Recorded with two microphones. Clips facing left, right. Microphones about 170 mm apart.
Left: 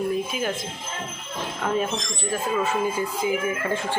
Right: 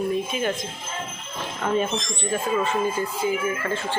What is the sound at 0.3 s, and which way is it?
Speech, 5° left (ahead or behind).